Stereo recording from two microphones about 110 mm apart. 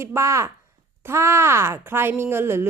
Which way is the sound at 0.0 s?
25° right (ahead or behind).